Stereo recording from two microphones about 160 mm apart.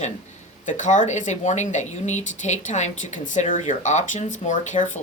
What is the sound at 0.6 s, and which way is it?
Speech, 50° left (ahead or behind).